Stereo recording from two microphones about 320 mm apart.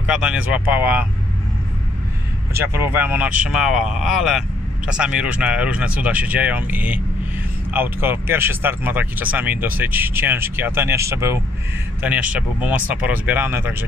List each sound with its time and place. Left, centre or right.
0.0 s speech: centre
2.6 s speech: centre